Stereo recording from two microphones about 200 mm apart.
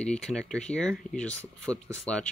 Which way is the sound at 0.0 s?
5° left (ahead or behind).